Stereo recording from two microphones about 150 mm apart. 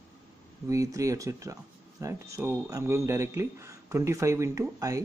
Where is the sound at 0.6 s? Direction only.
20° right (ahead or behind).